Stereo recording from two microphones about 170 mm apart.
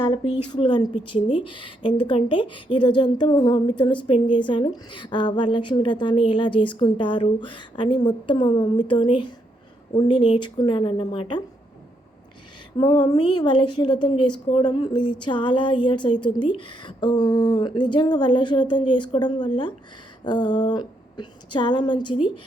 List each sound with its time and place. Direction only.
0.5 s a woman's voice: 25° left (ahead or behind)
12.8 s a woman's voice: 30° left (ahead or behind)